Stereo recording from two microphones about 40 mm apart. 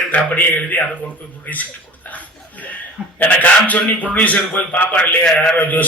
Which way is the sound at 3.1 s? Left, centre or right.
Left.